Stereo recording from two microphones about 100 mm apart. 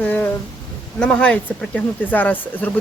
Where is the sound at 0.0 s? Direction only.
20° left (ahead or behind).